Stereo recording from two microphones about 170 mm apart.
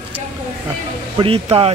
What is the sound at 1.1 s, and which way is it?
Speech, 30° right (ahead or behind).